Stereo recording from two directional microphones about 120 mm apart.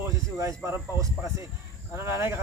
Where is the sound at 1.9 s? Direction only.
20° right (ahead or behind).